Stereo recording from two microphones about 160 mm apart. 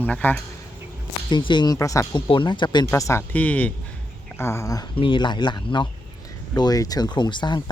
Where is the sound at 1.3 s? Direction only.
30° left (ahead or behind).